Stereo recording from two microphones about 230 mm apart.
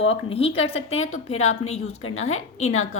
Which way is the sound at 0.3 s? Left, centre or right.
Left.